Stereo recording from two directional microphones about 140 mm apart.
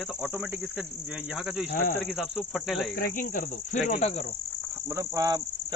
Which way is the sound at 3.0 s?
75° left (ahead or behind).